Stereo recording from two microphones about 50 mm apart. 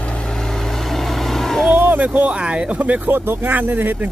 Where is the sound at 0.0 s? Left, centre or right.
Left.